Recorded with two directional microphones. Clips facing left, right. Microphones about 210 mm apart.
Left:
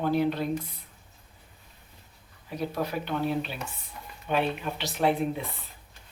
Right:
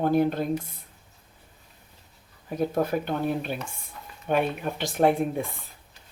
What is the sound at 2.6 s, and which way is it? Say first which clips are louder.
Speech: right 5 dB; 50° right (ahead or behind).